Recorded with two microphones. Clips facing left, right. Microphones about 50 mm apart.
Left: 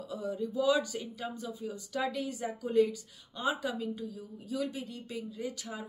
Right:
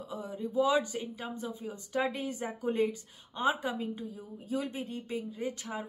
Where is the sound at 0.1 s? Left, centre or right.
Right.